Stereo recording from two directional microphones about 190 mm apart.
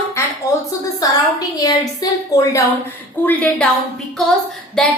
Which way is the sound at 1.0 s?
20° left (ahead or behind).